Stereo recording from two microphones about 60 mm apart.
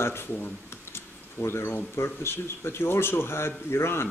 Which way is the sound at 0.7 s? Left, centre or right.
Left.